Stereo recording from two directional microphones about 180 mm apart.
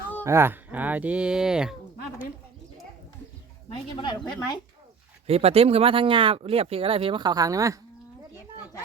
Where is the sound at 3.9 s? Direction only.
25° left (ahead or behind).